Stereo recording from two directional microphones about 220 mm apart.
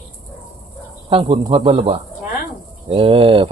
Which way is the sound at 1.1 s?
25° right (ahead or behind).